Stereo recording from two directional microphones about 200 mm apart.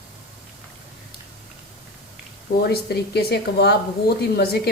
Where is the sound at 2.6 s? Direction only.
50° left (ahead or behind).